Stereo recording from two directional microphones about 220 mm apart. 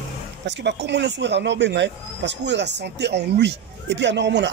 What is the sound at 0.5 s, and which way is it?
Speech, 50° right (ahead or behind).